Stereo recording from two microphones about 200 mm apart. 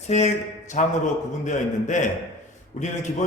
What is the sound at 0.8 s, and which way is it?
A man's voice, 40° left (ahead or behind).